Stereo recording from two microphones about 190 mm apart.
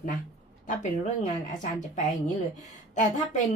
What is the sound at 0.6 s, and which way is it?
A woman's voice, 40° left (ahead or behind).